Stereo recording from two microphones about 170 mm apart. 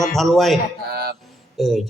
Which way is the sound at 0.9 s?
60° right (ahead or behind).